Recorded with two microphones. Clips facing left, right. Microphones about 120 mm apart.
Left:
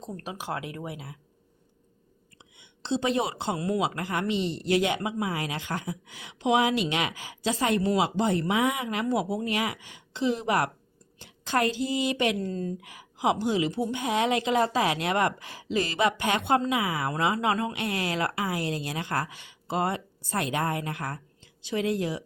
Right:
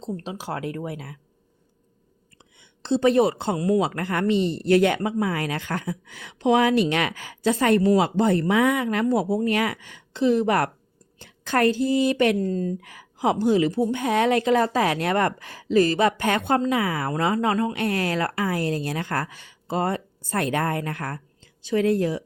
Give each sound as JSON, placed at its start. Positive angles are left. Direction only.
{"t": 0.0, "sound": "speech", "side_deg": -30}
{"t": 0.9, "sound": "a woman's voice", "side_deg": -50}
{"t": 2.6, "sound": "a woman's voice", "side_deg": -50}